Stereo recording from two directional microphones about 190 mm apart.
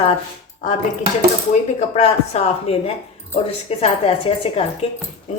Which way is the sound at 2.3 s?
30° left (ahead or behind).